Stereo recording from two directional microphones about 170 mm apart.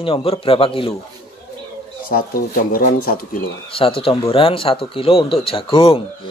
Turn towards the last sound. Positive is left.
turn(degrees=35)  # may be behind; listen again after turning